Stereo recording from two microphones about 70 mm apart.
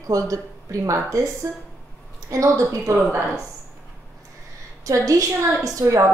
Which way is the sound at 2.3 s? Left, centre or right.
Right.